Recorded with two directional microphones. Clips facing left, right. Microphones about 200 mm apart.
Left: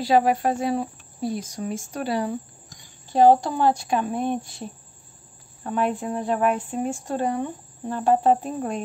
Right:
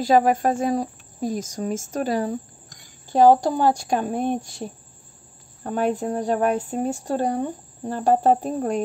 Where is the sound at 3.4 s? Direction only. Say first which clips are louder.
Right 2 dB; 40° right (ahead or behind).